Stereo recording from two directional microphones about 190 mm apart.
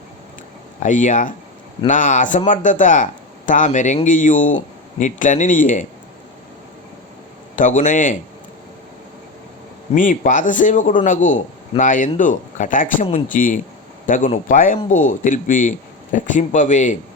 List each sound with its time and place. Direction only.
0.8 s speech: 40° left (ahead or behind)
7.5 s speech: 45° left (ahead or behind)
9.9 s speech: 45° left (ahead or behind)